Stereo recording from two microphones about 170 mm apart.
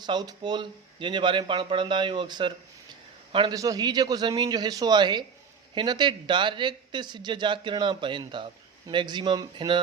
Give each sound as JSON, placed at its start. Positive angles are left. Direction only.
{"t": 0.0, "sound": "speech", "side_deg": -25}